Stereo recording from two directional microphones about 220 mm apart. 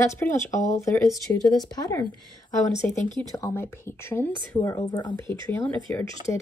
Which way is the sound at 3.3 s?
10° left (ahead or behind).